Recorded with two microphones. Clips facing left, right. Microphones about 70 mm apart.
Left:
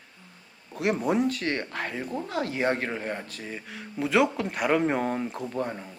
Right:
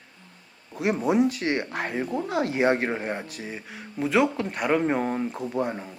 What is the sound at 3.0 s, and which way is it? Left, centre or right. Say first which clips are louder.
Speech: right 2 dB; centre.